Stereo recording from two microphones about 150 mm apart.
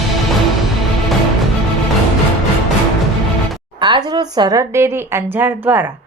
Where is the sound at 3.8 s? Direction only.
30° right (ahead or behind).